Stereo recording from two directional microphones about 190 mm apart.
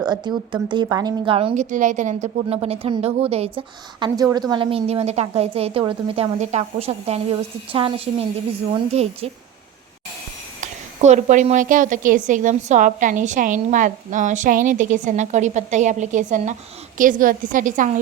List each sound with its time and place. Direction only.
0.0 s a woman's voice: 20° right (ahead or behind)
1.7 s a woman's voice: 40° right (ahead or behind)
4.0 s a woman's voice: 20° right (ahead or behind)
10.6 s a woman's voice: 40° right (ahead or behind)